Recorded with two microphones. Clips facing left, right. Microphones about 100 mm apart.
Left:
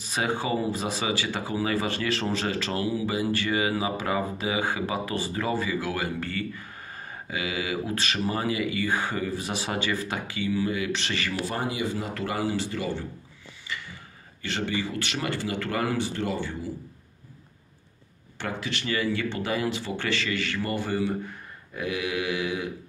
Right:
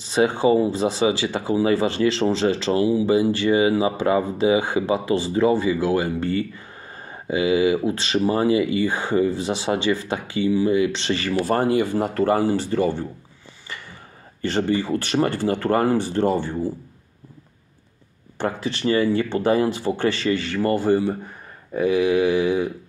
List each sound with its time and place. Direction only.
0.0 s speech: 30° right (ahead or behind)
11.5 s speech: 50° right (ahead or behind)
13.7 s a sound: 45° right (ahead or behind)
14.4 s speech: 40° right (ahead or behind)
18.4 s speech: 35° right (ahead or behind)